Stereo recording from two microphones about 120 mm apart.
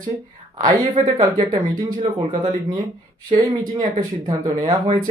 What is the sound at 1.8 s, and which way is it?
Speech, 35° right (ahead or behind).